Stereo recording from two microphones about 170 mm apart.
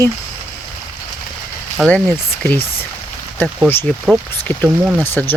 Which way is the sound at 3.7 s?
10° left (ahead or behind).